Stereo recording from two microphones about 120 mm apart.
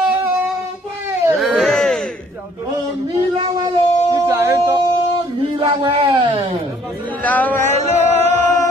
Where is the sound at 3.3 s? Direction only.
40° right (ahead or behind).